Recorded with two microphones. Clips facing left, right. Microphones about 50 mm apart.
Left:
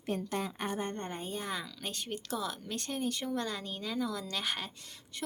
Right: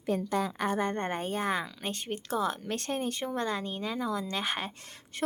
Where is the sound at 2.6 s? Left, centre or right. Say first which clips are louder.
Right 5 dB; right.